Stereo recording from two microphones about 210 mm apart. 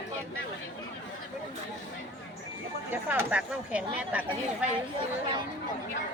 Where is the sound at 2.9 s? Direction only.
10° right (ahead or behind).